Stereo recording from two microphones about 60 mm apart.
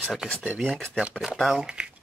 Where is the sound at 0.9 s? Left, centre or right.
Centre.